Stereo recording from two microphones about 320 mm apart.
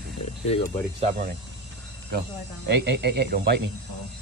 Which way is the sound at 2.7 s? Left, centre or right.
Right.